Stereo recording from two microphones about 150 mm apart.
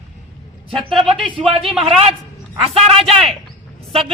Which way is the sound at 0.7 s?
35° right (ahead or behind).